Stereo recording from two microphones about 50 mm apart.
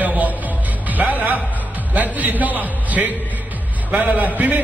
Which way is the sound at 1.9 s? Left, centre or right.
Right.